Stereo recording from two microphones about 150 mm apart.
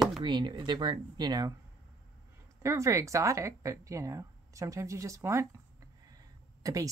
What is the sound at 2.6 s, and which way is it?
Speech, 20° right (ahead or behind).